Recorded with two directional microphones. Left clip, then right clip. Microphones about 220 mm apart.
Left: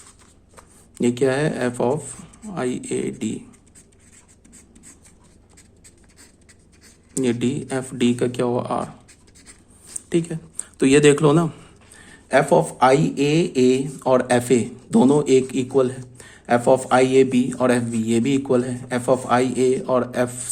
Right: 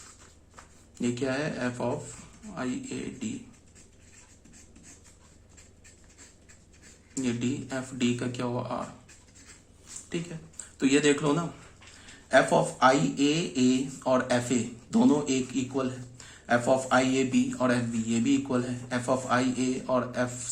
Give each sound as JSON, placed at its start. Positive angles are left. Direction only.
{"t": 0.9, "sound": "speech", "side_deg": 40}
{"t": 7.1, "sound": "speech", "side_deg": 45}
{"t": 10.1, "sound": "speech", "side_deg": 50}
{"t": 12.3, "sound": "speech", "side_deg": 35}